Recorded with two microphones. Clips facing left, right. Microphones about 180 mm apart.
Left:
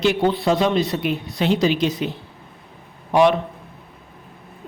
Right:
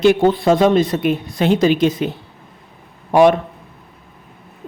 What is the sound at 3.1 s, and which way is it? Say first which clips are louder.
Speech: right 4 dB; 50° right (ahead or behind).